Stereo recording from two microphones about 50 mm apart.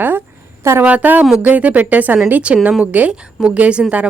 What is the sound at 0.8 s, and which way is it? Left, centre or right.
A woman's voice, right.